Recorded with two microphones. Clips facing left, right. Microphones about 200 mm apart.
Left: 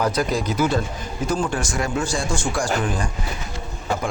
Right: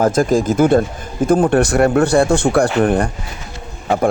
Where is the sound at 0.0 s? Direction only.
45° right (ahead or behind).